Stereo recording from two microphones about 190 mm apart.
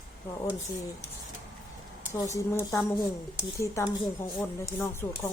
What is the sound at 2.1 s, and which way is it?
Speech, 15° left (ahead or behind).